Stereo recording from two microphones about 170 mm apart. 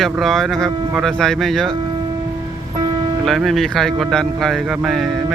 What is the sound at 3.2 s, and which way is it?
Speech, centre (ahead or behind).